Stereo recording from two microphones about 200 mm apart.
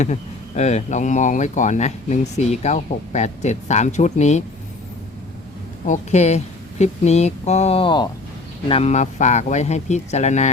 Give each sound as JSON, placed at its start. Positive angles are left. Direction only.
{"t": 0.0, "sound": "speech", "side_deg": 35}
{"t": 5.8, "sound": "speech", "side_deg": 35}